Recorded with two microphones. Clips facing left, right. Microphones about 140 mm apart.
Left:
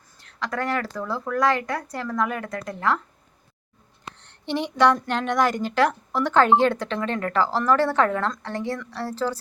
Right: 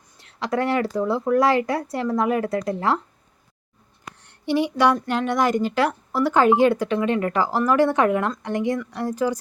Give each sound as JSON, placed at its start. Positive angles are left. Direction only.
{"t": 0.3, "sound": "speech", "side_deg": -25}
{"t": 4.2, "sound": "speech", "side_deg": -10}